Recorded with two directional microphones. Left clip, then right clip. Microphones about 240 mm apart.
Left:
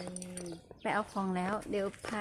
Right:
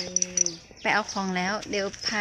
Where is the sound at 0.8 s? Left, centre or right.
Centre.